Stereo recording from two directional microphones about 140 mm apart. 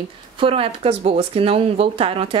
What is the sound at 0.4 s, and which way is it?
Speech, 40° right (ahead or behind).